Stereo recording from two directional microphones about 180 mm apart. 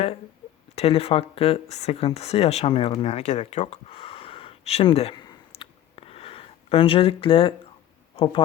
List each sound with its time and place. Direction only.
0.8 s speech: 30° left (ahead or behind)
5.5 s a sound: 30° left (ahead or behind)
8.1 s speech: 30° left (ahead or behind)